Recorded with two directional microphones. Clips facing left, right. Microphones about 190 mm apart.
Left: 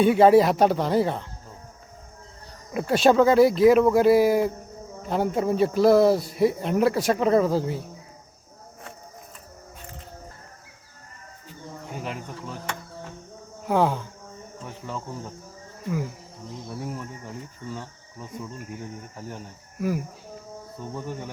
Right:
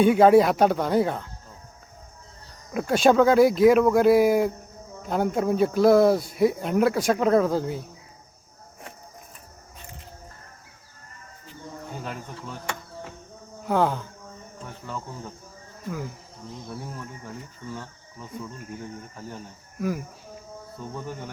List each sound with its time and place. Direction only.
0.0 s speech: centre (ahead or behind)
2.7 s speech: 5° left (ahead or behind)
11.9 s a sound: 15° left (ahead or behind)
13.7 s speech: 5° left (ahead or behind)
16.8 s speech: 15° left (ahead or behind)